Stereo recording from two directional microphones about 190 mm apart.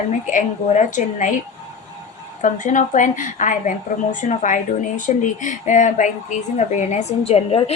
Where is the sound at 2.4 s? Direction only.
40° left (ahead or behind).